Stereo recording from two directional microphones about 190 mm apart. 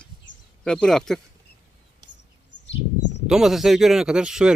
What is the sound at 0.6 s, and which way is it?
Speech, 5° left (ahead or behind).